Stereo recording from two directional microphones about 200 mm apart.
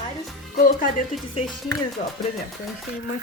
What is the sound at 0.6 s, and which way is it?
Speech, 45° left (ahead or behind).